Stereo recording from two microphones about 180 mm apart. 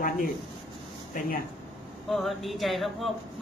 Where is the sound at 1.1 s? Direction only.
50° left (ahead or behind).